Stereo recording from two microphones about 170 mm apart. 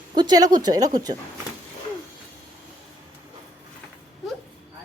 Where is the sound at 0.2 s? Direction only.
25° right (ahead or behind).